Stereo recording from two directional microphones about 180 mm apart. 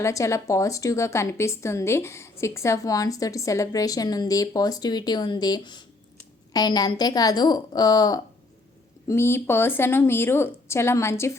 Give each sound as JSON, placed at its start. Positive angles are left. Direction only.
{"t": 0.0, "sound": "a woman's voice", "side_deg": 15}